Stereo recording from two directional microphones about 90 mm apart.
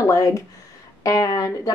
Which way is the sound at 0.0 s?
40° left (ahead or behind).